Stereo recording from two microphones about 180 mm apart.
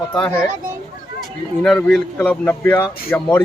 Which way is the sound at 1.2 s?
Centre (ahead or behind).